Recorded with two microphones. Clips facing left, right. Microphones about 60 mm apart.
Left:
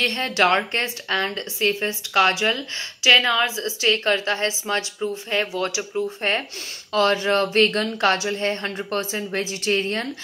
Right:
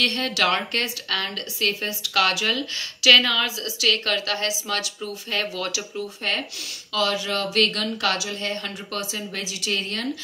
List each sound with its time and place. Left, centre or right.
0.0 s speech: left